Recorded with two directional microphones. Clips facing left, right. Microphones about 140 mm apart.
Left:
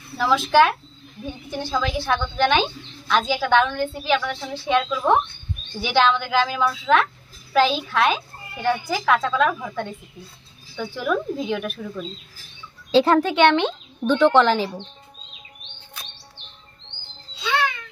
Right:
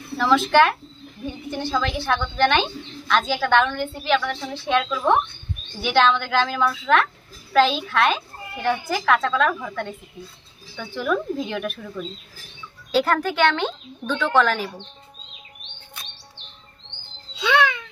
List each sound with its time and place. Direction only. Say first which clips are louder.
0.2 s a woman's voice: even; 5° left (ahead or behind)
12.9 s speech: left 4 dB; 20° left (ahead or behind)